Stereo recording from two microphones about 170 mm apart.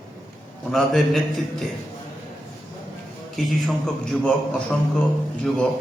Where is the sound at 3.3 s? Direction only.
Centre (ahead or behind).